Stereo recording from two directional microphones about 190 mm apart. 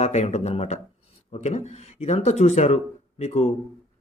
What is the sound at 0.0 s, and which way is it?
Speech, 35° left (ahead or behind).